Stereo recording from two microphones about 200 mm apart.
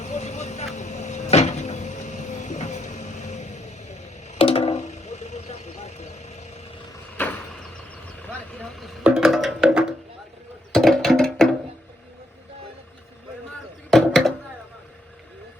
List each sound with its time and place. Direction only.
0.0 s vehicle: 35° left (ahead or behind)
9.0 s music: 5° right (ahead or behind)
13.9 s a sound: centre (ahead or behind)